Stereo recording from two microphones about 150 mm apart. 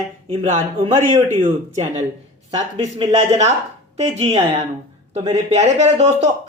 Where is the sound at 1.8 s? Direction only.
55° right (ahead or behind).